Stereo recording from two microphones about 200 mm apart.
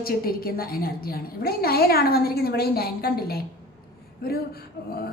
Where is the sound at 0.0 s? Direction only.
50° left (ahead or behind).